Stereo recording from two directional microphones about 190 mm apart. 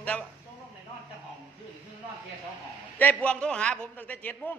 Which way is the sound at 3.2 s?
5° left (ahead or behind).